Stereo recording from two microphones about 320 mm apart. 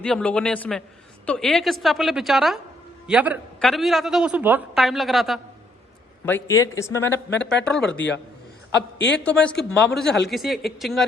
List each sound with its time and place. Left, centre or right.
0.0 s a woman's voice: centre
7.9 s a man's voice: left
9.2 s a woman's voice: centre